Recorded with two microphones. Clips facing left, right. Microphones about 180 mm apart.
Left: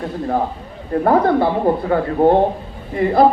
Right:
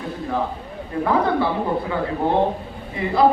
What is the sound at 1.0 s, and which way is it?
Speech, 50° left (ahead or behind).